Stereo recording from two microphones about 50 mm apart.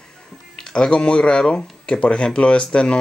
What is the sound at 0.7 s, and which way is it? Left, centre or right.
Speech, centre.